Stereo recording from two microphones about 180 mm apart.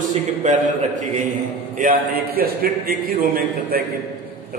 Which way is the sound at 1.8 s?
55° right (ahead or behind).